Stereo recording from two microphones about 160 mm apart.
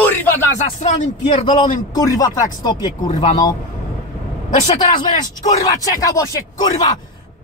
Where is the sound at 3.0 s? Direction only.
50° left (ahead or behind).